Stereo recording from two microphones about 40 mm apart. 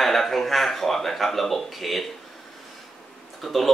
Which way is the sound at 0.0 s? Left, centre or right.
Centre.